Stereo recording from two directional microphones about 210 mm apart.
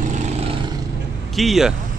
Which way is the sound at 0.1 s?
35° right (ahead or behind).